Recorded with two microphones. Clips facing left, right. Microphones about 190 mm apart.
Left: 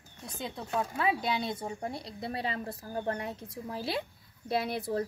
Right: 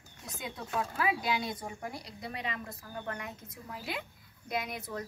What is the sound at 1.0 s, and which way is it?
A woman's voice, 25° left (ahead or behind).